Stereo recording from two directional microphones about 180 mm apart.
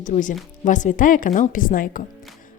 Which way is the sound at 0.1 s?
45° left (ahead or behind).